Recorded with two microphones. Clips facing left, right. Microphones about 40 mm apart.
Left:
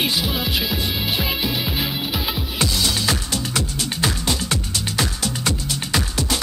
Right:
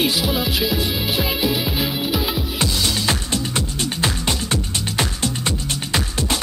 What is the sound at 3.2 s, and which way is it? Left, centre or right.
Music, right.